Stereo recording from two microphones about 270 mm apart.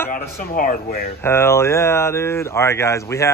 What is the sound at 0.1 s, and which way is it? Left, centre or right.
Speech, left.